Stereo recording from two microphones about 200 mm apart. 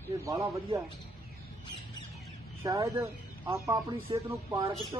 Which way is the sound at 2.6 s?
15° right (ahead or behind).